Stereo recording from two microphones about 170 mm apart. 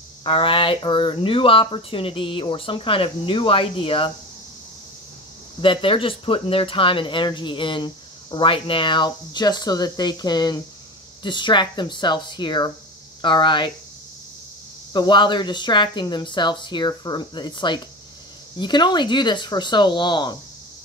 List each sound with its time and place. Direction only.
0.2 s speech: 30° left (ahead or behind)
5.6 s speech: 30° left (ahead or behind)
14.9 s speech: 25° left (ahead or behind)